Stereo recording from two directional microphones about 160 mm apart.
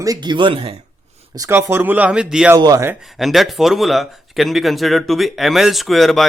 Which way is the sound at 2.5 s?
25° right (ahead or behind).